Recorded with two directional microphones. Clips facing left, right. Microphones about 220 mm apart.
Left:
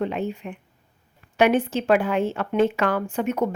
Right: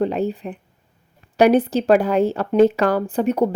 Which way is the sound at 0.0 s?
35° right (ahead or behind).